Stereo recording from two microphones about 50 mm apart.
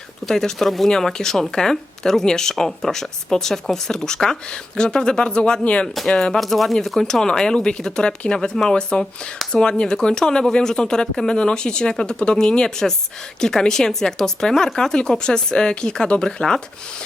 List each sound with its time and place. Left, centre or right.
0.3 s speech: centre
6.4 s speech: centre